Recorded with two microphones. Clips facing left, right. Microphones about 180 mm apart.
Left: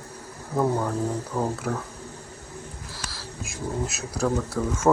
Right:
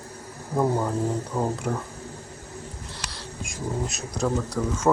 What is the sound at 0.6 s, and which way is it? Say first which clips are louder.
Speech: even; 5° right (ahead or behind).